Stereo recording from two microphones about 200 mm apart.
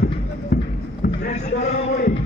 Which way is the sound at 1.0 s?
45° left (ahead or behind).